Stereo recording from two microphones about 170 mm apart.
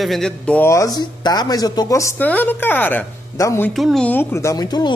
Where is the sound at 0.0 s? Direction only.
Centre (ahead or behind).